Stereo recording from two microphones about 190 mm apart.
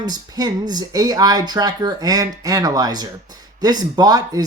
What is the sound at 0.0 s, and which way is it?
Speech, 20° right (ahead or behind).